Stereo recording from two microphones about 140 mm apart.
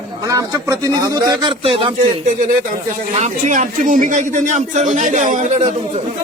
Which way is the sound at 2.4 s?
75° right (ahead or behind).